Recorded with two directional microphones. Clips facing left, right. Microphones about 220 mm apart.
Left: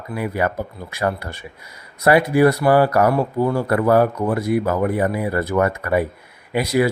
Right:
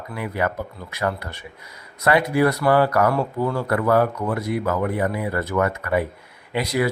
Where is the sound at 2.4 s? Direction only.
25° left (ahead or behind).